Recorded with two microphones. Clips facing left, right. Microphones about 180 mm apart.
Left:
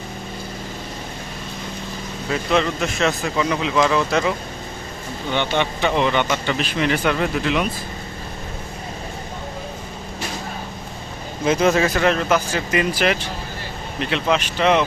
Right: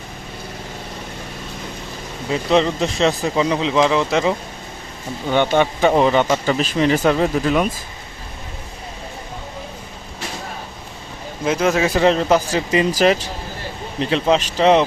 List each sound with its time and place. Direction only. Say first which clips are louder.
2.3 s speech: right 3 dB; 30° right (ahead or behind)
5.3 s speech: right 5 dB; 45° right (ahead or behind)
11.4 s speech: left 1 dB; 5° right (ahead or behind)
11.9 s speech: right 3 dB; 30° right (ahead or behind)